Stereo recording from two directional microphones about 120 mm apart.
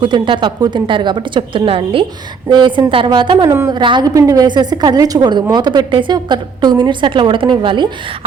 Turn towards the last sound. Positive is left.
turn(degrees=-40)  # may be behind; listen again after turning